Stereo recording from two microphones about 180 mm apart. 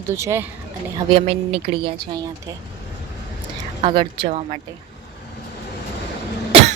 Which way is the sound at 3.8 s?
30° right (ahead or behind).